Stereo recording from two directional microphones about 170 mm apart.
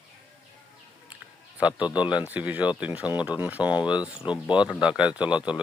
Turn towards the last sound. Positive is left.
turn(degrees=-5)  # may be behind; listen again after turning